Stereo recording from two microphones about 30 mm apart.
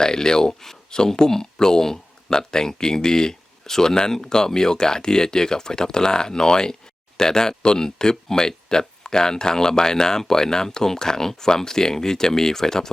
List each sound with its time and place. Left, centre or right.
0.0 s speech: left